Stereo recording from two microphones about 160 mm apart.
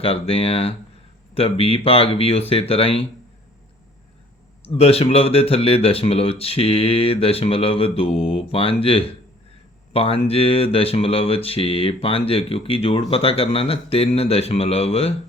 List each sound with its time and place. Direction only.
0.0 s speech: 35° left (ahead or behind)
4.6 s speech: 40° left (ahead or behind)